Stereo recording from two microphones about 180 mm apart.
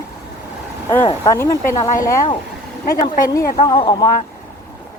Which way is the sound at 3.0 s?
50° left (ahead or behind).